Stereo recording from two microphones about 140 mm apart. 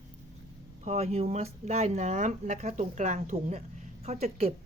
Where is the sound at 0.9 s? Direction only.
50° right (ahead or behind).